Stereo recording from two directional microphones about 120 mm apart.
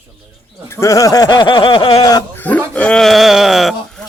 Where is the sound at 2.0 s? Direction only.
30° left (ahead or behind).